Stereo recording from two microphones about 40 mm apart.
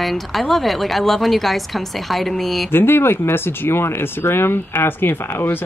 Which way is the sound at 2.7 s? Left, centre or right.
Left.